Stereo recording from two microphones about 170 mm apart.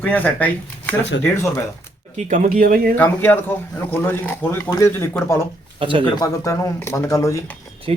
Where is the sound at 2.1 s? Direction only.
45° right (ahead or behind).